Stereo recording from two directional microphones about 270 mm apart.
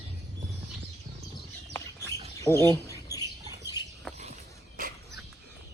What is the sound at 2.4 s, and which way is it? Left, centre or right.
Bird, centre.